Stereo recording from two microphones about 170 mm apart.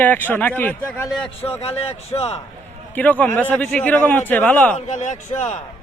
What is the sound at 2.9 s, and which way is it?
A man's voice, 10° left (ahead or behind).